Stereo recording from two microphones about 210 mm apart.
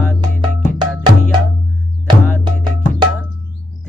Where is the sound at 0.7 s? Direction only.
20° right (ahead or behind).